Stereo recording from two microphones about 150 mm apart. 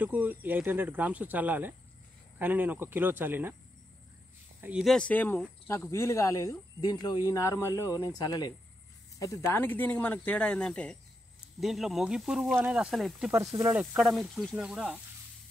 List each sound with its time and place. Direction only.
0.0 s speech: 10° right (ahead or behind)
4.6 s speech: 10° right (ahead or behind)
4.8 s speech: 5° left (ahead or behind)
13.3 s speech: 20° right (ahead or behind)
13.7 s speech: 5° right (ahead or behind)